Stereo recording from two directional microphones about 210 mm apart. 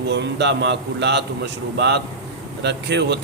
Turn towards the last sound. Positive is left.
turn(degrees=-55)  # may be behind; listen again after turning